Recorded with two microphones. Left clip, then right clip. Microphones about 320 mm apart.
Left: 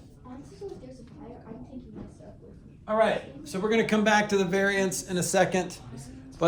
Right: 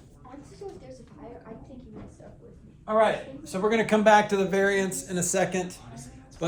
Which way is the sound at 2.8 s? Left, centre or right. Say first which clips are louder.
Right 2 dB; centre.